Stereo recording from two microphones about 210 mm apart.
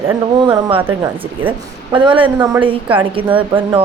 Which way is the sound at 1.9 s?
25° right (ahead or behind).